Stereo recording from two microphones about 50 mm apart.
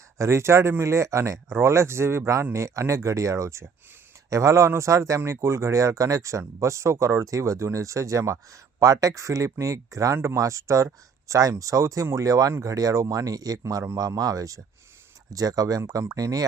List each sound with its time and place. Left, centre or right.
0.2 s speech: right
1.5 s speech: right
12.0 s speech: right
15.6 s speech: right